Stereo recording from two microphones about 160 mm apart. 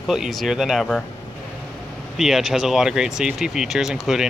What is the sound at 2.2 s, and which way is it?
Speech, centre (ahead or behind).